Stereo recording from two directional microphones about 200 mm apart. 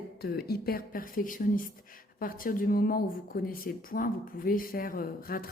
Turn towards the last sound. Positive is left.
turn(degrees=45)  # may be behind; listen again after turning